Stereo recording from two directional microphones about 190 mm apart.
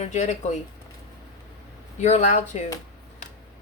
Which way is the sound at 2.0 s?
35° left (ahead or behind).